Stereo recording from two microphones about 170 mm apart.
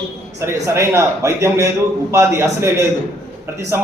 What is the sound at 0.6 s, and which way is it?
A man's voice, 15° right (ahead or behind).